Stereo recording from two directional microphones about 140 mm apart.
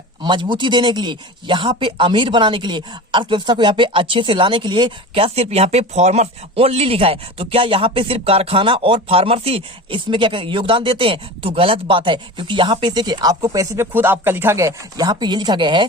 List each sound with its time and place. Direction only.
0.2 s speech: 35° right (ahead or behind)